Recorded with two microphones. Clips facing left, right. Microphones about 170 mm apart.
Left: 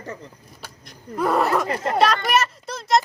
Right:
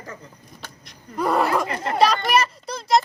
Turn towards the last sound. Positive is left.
turn(degrees=0)  # may be behind; listen again after turning